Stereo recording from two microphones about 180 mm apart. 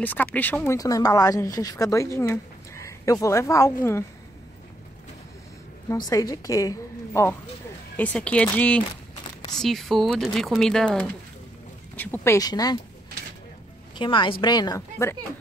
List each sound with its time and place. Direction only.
0.0 s speech: 10° left (ahead or behind)
5.9 s a woman's voice: 20° left (ahead or behind)
13.9 s speech: 25° left (ahead or behind)